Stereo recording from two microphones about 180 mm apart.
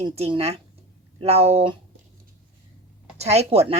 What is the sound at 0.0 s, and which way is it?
Speech, 30° right (ahead or behind).